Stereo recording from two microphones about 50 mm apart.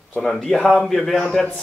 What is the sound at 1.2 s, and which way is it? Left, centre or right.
Speech, centre.